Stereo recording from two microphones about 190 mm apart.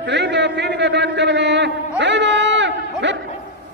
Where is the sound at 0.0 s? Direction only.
65° right (ahead or behind).